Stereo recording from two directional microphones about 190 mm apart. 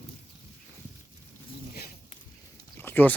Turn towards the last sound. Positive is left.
turn(degrees=10)  # may be behind; listen again after turning